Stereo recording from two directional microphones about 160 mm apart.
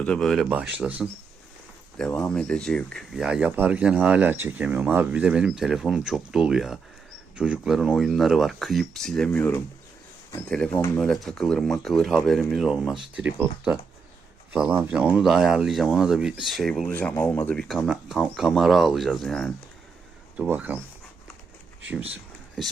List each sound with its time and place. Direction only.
0.0 s speech: 5° left (ahead or behind)
2.0 s speech: 5° left (ahead or behind)
11.0 s speech: centre (ahead or behind)
20.3 s speech: 10° right (ahead or behind)
22.1 s a sound: centre (ahead or behind)